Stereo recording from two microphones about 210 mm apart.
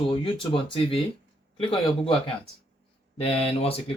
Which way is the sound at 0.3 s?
25° left (ahead or behind).